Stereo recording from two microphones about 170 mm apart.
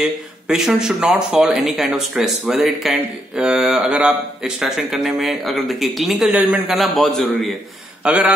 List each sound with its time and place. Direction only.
0.0 s speech: 5° right (ahead or behind)